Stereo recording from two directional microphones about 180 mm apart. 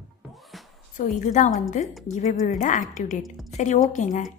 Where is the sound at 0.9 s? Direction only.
45° left (ahead or behind).